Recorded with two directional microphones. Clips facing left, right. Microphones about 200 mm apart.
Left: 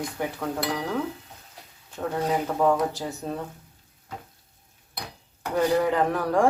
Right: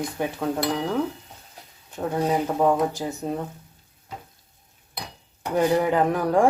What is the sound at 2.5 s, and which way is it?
Speech, 20° right (ahead or behind).